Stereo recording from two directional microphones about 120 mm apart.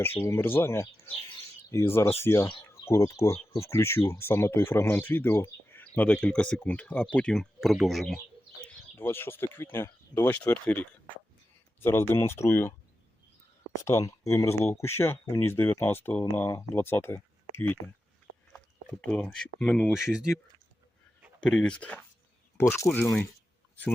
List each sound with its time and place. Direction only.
0.3 s speech: 20° left (ahead or behind); by 8.2 s centre (ahead or behind)
9.0 s speech: 20° left (ahead or behind)
13.8 s speech: 20° left (ahead or behind)
19.2 s speech: 5° left (ahead or behind)
19.9 s speech: 5° right (ahead or behind)
21.4 s speech: 5° left (ahead or behind)
22.5 s speech: 20° left (ahead or behind)